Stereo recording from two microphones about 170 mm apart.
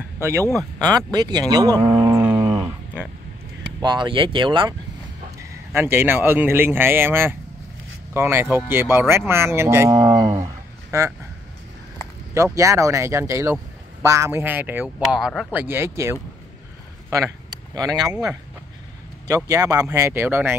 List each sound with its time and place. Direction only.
0.2 s speech: 15° right (ahead or behind)
2.6 s a sound: 10° right (ahead or behind)
3.8 s speech: 25° right (ahead or behind)
5.4 s speech: 15° right (ahead or behind)
12.5 s speech: 20° right (ahead or behind)
19.2 s speech: 20° right (ahead or behind)